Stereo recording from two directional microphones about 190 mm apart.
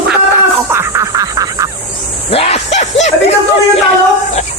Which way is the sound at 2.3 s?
30° left (ahead or behind).